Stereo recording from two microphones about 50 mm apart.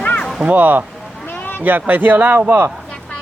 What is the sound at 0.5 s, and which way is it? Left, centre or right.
Speech, right.